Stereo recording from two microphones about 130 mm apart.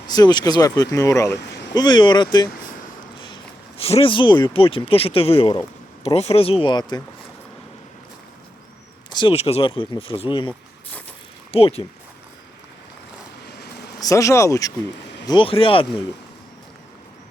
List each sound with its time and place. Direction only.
0.1 s speech: 30° left (ahead or behind)
1.8 s speech: 35° left (ahead or behind)
3.8 s speech: 50° left (ahead or behind)
9.0 s a sound: 35° left (ahead or behind)
9.3 s speech: 50° left (ahead or behind)
11.5 s speech: 50° left (ahead or behind)
14.0 s speech: 25° left (ahead or behind)
15.3 s speech: 40° left (ahead or behind)